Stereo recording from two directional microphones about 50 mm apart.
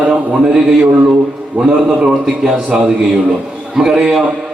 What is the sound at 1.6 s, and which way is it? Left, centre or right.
A man's voice, centre.